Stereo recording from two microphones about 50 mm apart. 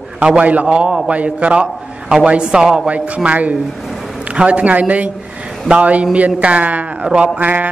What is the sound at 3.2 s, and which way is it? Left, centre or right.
A man's voice, right.